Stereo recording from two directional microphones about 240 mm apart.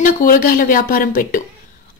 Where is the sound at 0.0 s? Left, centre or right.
Left.